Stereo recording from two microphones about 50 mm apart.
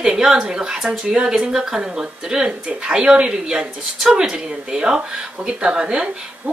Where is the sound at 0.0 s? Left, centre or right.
Centre.